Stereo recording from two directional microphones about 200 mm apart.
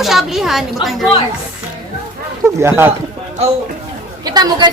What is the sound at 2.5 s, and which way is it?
Speech, 10° right (ahead or behind).